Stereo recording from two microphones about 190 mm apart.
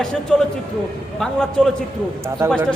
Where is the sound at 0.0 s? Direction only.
5° left (ahead or behind).